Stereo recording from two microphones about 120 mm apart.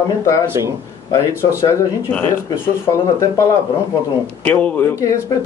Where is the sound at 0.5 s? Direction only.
20° right (ahead or behind).